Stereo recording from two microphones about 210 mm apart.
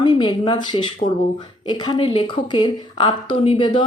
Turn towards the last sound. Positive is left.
turn(degrees=25)  # may be behind; listen again after turning